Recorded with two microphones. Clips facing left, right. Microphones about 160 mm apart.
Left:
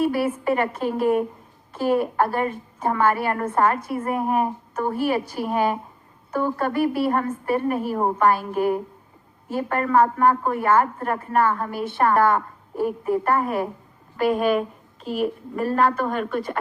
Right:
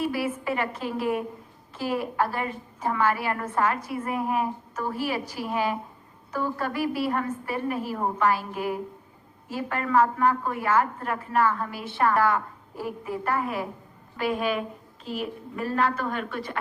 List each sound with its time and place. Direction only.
0.0 s a woman's voice: 50° left (ahead or behind)